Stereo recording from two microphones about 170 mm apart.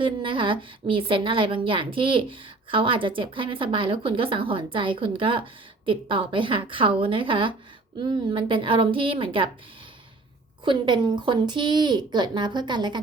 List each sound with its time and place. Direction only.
0.0 s a woman's voice: 30° right (ahead or behind)
10.7 s speech: 25° right (ahead or behind)